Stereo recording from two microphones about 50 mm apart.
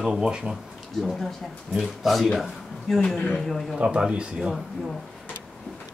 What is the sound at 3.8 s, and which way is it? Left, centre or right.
Speech, right.